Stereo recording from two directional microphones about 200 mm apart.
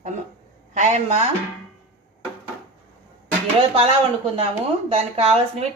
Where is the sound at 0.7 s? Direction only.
35° right (ahead or behind).